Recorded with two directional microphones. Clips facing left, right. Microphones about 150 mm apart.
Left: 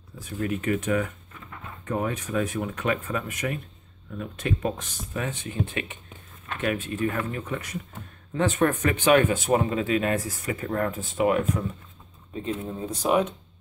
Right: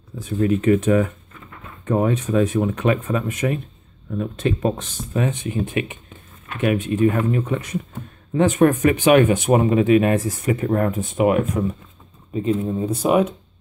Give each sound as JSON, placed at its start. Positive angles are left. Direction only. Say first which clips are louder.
{"t": 0.2, "sound": "speech", "louder": "right 9 dB", "side_deg": -25}